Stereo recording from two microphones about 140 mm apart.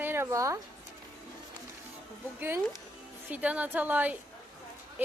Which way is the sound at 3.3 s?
10° right (ahead or behind).